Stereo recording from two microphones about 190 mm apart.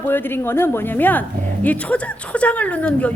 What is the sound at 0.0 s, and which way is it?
A woman's voice, 10° left (ahead or behind).